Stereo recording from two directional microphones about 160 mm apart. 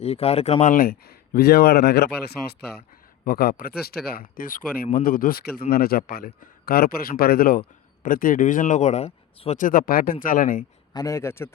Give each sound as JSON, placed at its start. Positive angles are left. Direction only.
{"t": 0.0, "sound": "speech", "side_deg": 40}
{"t": 3.2, "sound": "speech", "side_deg": 70}
{"t": 9.6, "sound": "speech", "side_deg": 60}
{"t": 10.9, "sound": "a man's voice", "side_deg": 20}